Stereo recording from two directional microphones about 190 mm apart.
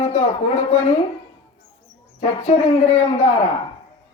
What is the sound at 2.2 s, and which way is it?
A man's voice, 35° left (ahead or behind).